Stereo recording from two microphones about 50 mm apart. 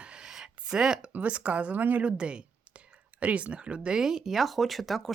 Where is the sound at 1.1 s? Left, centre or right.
Right.